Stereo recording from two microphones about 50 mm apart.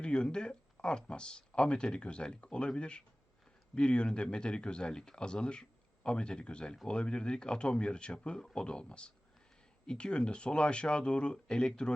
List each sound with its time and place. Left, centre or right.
0.0 s speech: centre